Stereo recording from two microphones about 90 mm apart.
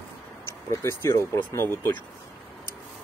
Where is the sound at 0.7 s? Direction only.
30° left (ahead or behind).